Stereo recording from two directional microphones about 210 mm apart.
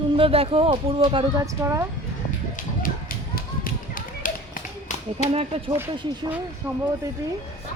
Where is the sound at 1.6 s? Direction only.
10° right (ahead or behind).